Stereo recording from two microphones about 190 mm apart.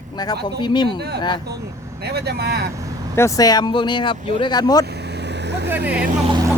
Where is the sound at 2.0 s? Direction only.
60° right (ahead or behind).